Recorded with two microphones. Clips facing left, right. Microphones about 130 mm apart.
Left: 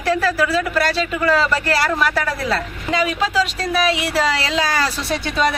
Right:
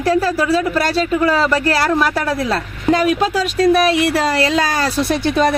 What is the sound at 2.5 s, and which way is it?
Speech, 50° right (ahead or behind).